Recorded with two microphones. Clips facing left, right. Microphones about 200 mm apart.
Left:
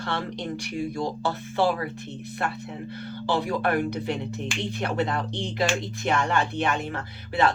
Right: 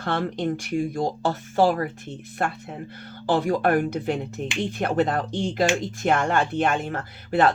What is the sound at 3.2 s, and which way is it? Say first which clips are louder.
Speech: right 4 dB; 45° right (ahead or behind).